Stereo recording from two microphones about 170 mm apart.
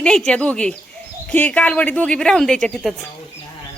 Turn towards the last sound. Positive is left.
turn(degrees=0)  # may be behind; listen again after turning